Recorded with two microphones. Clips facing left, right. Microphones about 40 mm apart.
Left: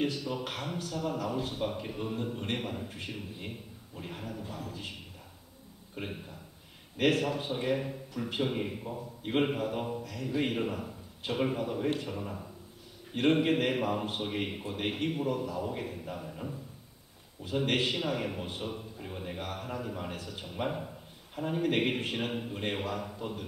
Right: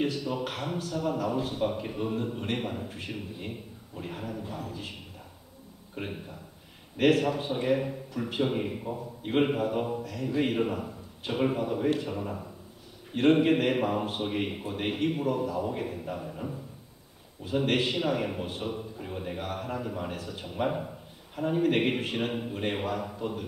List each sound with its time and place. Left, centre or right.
0.0 s a man's voice: centre
5.9 s a man's voice: centre